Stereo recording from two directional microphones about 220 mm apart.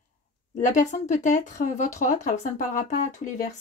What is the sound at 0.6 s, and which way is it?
Speech, 35° left (ahead or behind).